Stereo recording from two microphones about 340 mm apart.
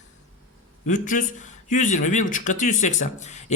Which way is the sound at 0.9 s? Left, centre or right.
Left.